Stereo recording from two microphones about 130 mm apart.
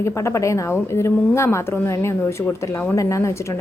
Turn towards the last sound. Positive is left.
turn(degrees=25)  # may be behind; listen again after turning